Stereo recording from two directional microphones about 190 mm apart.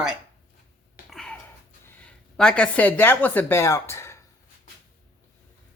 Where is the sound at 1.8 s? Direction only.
5° left (ahead or behind).